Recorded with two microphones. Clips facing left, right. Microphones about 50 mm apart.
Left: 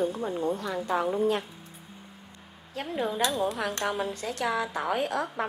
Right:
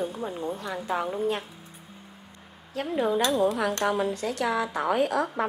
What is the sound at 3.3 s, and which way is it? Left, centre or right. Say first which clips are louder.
Speech: right 5 dB; centre.